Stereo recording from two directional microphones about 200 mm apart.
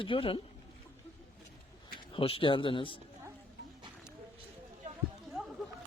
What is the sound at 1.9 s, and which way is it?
Speech, 25° left (ahead or behind).